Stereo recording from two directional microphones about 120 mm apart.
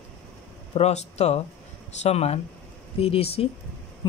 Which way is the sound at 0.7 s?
65° left (ahead or behind).